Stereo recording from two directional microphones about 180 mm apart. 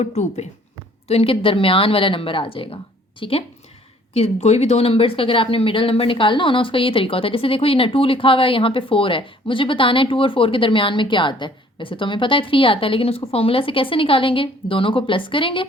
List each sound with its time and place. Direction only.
0.0 s a woman's voice: 40° left (ahead or behind)